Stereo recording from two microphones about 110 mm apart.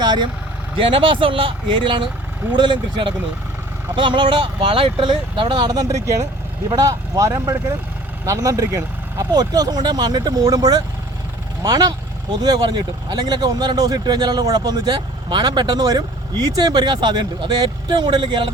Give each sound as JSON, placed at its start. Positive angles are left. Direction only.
{"t": 0.0, "sound": "vehicle", "side_deg": -40}
{"t": 0.8, "sound": "speech", "side_deg": -55}